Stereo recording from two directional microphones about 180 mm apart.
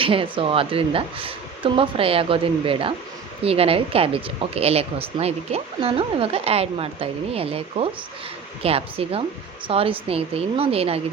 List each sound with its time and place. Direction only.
0.0 s speech: 30° right (ahead or behind)